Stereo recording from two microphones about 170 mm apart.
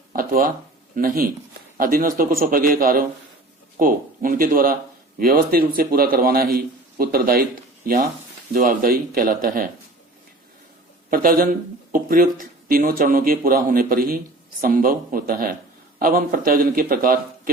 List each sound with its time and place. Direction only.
0.1 s a sound: 55° right (ahead or behind)
0.9 s a man's voice: 55° right (ahead or behind)
8.5 s a man's voice: 55° right (ahead or behind)
11.1 s a man's voice: 55° right (ahead or behind)